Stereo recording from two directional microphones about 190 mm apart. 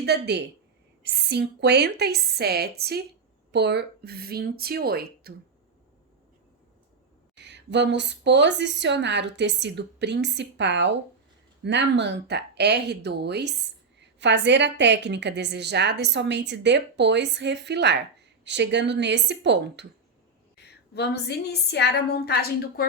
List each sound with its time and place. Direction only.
0.0 s a woman's voice: 60° right (ahead or behind)
7.3 s a woman's voice: 65° right (ahead or behind)
20.9 s a woman's voice: 60° left (ahead or behind)